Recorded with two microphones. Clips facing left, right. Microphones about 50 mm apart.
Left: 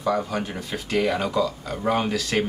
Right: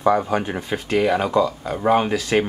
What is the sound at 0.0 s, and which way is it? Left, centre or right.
Speech, right.